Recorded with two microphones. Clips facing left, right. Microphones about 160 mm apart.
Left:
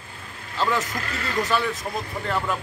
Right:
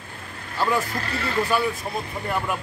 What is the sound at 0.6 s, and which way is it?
A man's voice, 15° right (ahead or behind).